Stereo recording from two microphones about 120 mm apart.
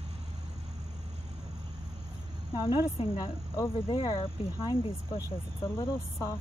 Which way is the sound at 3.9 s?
45° left (ahead or behind).